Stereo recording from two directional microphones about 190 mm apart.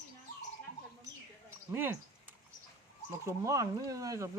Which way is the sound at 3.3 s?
15° right (ahead or behind).